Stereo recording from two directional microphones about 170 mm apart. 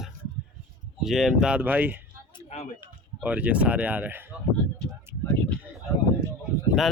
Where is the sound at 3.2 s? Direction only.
10° right (ahead or behind).